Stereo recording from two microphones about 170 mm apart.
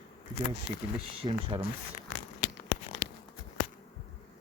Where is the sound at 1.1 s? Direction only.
35° right (ahead or behind).